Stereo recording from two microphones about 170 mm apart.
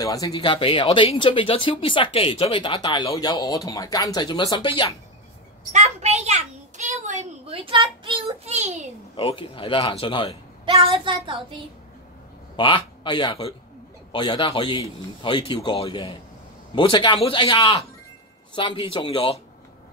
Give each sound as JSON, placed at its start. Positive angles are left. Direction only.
{"t": 0.0, "sound": "speech", "side_deg": 20}
{"t": 5.7, "sound": "a sound", "side_deg": -45}
{"t": 9.1, "sound": "speech", "side_deg": 30}
{"t": 10.6, "sound": "a woman's voice", "side_deg": -30}
{"t": 12.5, "sound": "a man's voice", "side_deg": 30}